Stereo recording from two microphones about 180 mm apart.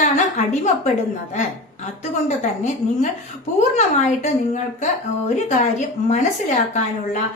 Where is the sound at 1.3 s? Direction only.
40° left (ahead or behind).